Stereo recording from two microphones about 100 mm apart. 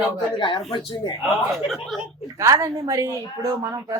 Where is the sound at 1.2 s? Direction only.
Centre (ahead or behind).